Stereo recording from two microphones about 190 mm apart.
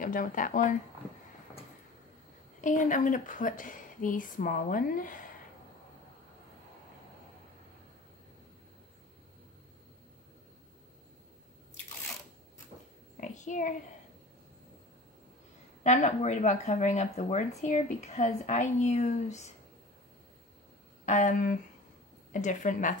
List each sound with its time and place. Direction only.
0.0 s a woman's voice: 45° left (ahead or behind)
2.6 s a woman's voice: 40° left (ahead or behind)
13.2 s a sound: 40° left (ahead or behind)
15.8 s speech: 35° left (ahead or behind)
21.0 s speech: 40° left (ahead or behind)